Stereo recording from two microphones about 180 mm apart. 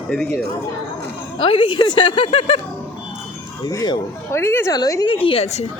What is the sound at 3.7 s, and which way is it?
A woman's voice, 20° left (ahead or behind).